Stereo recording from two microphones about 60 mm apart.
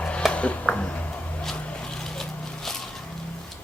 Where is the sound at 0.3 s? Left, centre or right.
Left.